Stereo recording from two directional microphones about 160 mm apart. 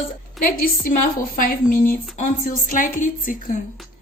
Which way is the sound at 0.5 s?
65° left (ahead or behind).